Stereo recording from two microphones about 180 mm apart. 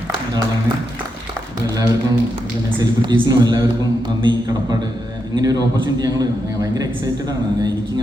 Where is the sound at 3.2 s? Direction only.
20° right (ahead or behind).